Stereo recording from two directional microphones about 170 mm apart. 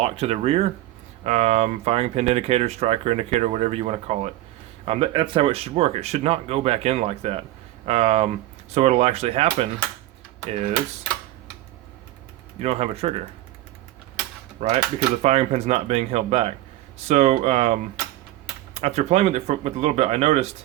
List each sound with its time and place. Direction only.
0.0 s speech: 40° right (ahead or behind)
12.5 s speech: 35° right (ahead or behind)
14.6 s speech: 45° right (ahead or behind)